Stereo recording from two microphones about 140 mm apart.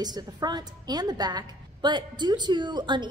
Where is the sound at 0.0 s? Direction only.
30° right (ahead or behind).